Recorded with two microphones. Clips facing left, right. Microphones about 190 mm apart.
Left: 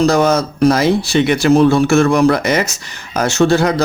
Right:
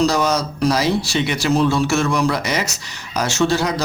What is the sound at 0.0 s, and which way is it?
Speech, 55° left (ahead or behind).